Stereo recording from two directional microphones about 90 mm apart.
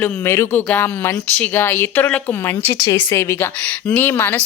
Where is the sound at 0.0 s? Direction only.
30° left (ahead or behind).